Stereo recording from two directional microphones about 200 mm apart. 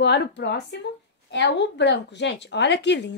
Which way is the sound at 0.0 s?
60° left (ahead or behind).